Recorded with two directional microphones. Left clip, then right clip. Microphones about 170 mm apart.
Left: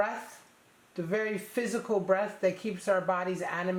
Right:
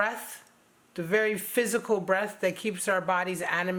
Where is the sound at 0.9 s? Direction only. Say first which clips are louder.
Right 5 dB; 30° right (ahead or behind).